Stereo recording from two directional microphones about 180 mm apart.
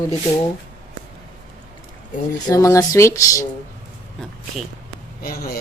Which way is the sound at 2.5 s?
20° left (ahead or behind).